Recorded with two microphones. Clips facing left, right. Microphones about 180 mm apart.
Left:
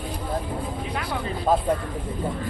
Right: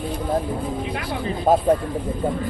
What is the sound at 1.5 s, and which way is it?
Speech, 45° right (ahead or behind).